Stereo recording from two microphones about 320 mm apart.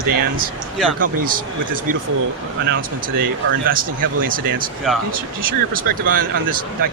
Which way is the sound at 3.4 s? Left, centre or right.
Right.